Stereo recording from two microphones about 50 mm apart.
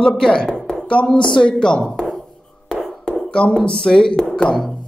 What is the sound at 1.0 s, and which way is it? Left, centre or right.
Speech, centre.